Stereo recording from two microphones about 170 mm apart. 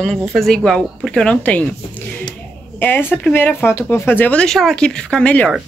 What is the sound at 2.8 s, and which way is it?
Speech, 10° left (ahead or behind).